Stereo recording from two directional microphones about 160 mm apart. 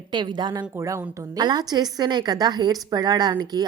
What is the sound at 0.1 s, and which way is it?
A woman's voice, 30° right (ahead or behind).